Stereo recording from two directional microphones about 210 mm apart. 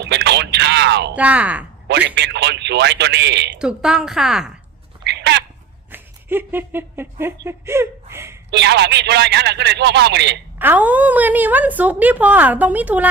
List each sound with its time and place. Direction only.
0.0 s a sound: 55° right (ahead or behind)
1.1 s a woman's voice: 5° right (ahead or behind)
1.9 s a man's voice: 55° right (ahead or behind)
3.6 s a woman's voice: 5° right (ahead or behind)
5.0 s cat: 55° right (ahead or behind)
5.9 s speech: 10° right (ahead or behind)
8.4 s a man's voice: 55° right (ahead or behind)
10.6 s a woman's voice: 10° right (ahead or behind)